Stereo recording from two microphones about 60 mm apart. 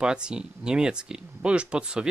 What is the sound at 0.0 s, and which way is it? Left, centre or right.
Speech, centre.